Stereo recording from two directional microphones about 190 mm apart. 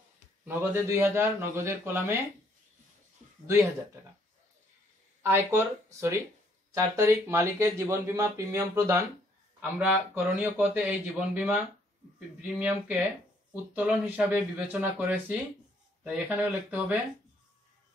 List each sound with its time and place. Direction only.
0.5 s speech: 10° right (ahead or behind)
5.2 s speech: 15° right (ahead or behind)